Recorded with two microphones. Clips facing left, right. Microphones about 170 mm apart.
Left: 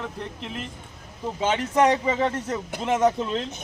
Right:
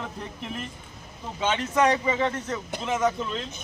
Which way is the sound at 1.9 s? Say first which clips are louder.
Left 2 dB; 30° left (ahead or behind).